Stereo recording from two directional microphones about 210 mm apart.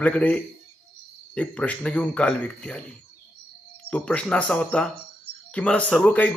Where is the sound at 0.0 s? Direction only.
5° left (ahead or behind).